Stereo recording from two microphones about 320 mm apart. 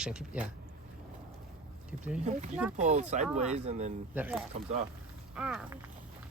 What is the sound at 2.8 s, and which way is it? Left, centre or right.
Speech, right.